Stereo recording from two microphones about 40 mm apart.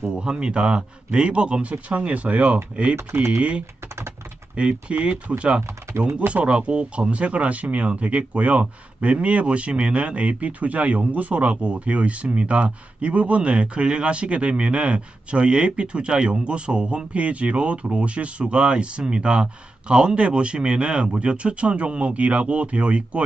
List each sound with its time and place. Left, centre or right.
0.1 s speech: right
3.0 s speech: right
3.3 s speech: right